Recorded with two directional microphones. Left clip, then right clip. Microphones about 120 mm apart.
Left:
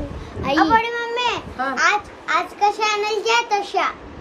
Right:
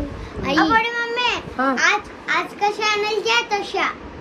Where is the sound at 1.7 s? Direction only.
45° left (ahead or behind).